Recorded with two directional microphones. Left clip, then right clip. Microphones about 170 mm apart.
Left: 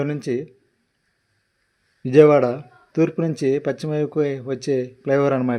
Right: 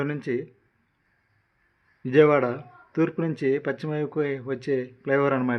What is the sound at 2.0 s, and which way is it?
Speech, 35° left (ahead or behind).